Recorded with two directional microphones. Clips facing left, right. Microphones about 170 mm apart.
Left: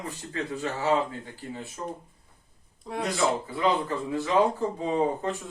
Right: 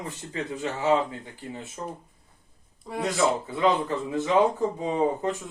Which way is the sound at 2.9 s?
Centre (ahead or behind).